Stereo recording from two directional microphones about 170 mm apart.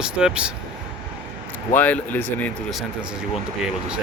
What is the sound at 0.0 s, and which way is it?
Speech, 5° right (ahead or behind).